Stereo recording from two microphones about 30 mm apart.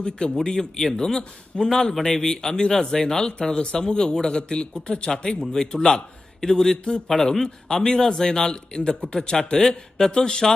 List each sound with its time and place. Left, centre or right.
0.4 s a man's voice: left
3.4 s a man's voice: left
9.3 s speech: left